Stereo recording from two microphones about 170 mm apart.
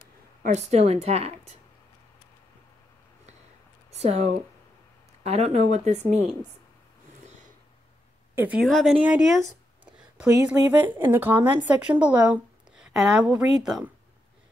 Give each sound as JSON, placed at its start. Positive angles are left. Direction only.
{"t": 0.4, "sound": "speech", "side_deg": -45}
{"t": 3.9, "sound": "speech", "side_deg": -40}
{"t": 8.4, "sound": "speech", "side_deg": -10}
{"t": 10.4, "sound": "speech", "side_deg": -10}